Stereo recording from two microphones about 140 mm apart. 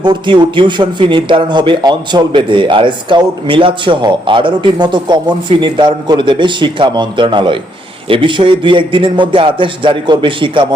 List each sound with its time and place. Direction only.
0.0 s a man's voice: 35° right (ahead or behind)